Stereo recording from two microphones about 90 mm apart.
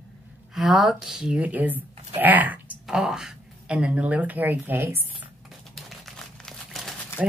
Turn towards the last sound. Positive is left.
turn(degrees=-10)  # may be behind; listen again after turning